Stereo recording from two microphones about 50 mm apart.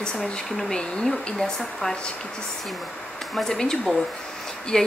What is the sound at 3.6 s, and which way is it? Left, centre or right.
A woman's voice, centre.